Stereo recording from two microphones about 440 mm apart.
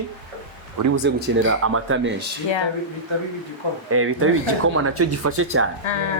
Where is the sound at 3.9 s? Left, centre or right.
Right.